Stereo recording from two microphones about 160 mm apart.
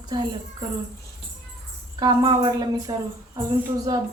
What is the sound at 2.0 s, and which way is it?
A woman's voice, 25° right (ahead or behind).